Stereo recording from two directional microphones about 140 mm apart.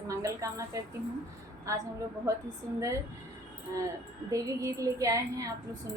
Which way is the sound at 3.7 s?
20° right (ahead or behind).